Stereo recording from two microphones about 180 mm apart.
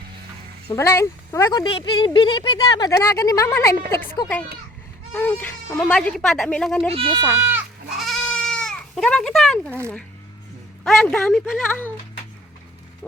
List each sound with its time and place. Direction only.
0.7 s speech: 15° left (ahead or behind)
6.9 s speech: 30° right (ahead or behind)
7.3 s speech: 15° right (ahead or behind)
7.9 s goat: centre (ahead or behind)
10.8 s speech: centre (ahead or behind)